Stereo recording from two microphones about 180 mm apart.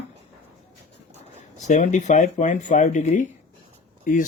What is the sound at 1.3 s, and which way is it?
Speech, 40° left (ahead or behind).